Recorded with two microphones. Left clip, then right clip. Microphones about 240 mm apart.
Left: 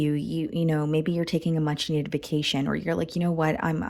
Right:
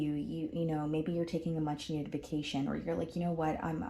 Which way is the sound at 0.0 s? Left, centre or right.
Left.